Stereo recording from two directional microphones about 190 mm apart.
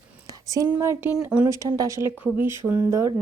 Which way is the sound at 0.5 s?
15° right (ahead or behind).